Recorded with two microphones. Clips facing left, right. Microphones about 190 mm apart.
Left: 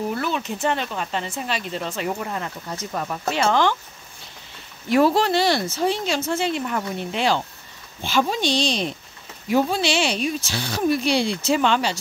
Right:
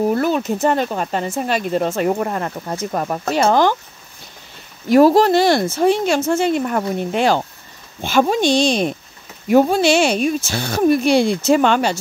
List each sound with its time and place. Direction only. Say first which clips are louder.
0.1 s speech: right 8 dB; 45° right (ahead or behind)
4.8 s speech: right 7 dB; 40° right (ahead or behind)